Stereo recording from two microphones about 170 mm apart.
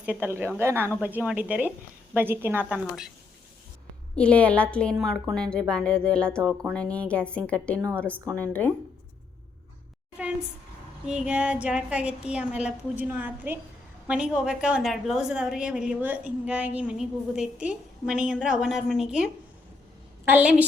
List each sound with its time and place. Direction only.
0.0 s a woman's voice: 10° right (ahead or behind)
4.1 s a woman's voice: 5° left (ahead or behind)
7.8 s a woman's voice: 15° right (ahead or behind)
8.4 s a woman's voice: 10° left (ahead or behind)
11.0 s a woman's voice: 5° right (ahead or behind)